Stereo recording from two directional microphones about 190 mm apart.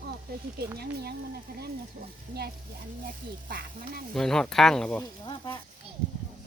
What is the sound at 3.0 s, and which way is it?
Speech, 50° right (ahead or behind).